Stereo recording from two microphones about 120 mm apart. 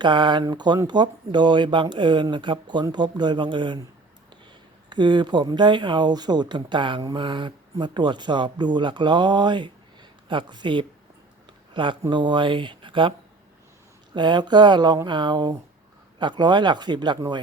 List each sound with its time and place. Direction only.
0.0 s speech: 40° right (ahead or behind)
4.9 s speech: 40° right (ahead or behind)